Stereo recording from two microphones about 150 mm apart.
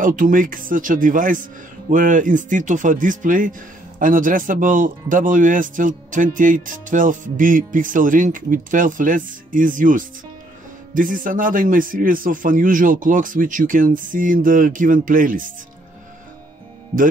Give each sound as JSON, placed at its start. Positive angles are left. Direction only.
{"t": 0.0, "sound": "speech", "side_deg": -60}